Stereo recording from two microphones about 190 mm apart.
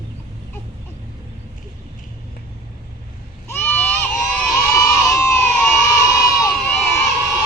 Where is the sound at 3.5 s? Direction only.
10° left (ahead or behind).